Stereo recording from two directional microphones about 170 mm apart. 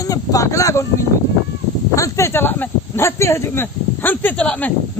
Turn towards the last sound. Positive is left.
turn(degrees=10)  # may be behind; listen again after turning